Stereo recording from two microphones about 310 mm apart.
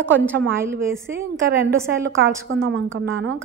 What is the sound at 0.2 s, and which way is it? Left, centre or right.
Speech, centre.